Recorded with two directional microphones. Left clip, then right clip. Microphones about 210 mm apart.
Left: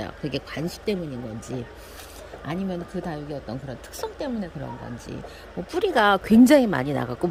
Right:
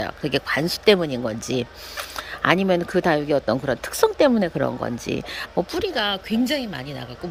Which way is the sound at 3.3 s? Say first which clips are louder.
Right 13 dB; 35° right (ahead or behind).